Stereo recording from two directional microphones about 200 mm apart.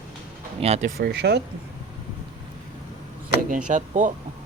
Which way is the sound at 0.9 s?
55° right (ahead or behind).